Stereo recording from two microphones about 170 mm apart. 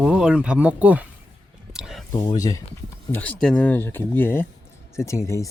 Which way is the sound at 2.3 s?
20° left (ahead or behind).